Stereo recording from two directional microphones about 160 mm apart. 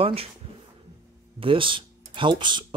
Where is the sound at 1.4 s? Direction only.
35° right (ahead or behind).